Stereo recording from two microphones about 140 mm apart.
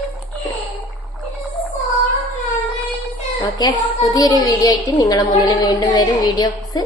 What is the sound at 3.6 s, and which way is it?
A woman's voice, 30° left (ahead or behind).